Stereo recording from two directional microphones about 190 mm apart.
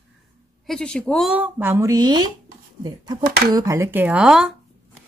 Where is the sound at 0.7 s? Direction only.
5° left (ahead or behind).